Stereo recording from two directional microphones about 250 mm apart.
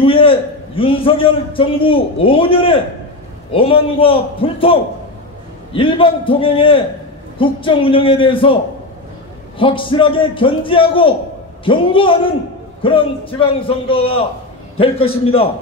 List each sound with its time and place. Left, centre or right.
0.0 s a man's voice: left
9.6 s a man's voice: left